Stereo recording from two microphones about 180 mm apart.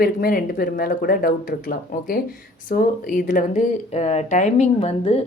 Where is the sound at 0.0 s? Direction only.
55° left (ahead or behind).